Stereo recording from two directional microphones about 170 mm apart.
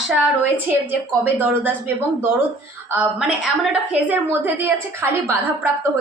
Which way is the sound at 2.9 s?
5° right (ahead or behind).